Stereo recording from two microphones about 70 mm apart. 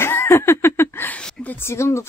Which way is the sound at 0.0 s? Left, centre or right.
Left.